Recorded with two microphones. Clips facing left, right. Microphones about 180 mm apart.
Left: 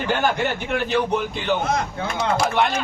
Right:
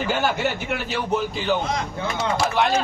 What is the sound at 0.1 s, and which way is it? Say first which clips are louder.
Speech: left 3 dB; 5° right (ahead or behind).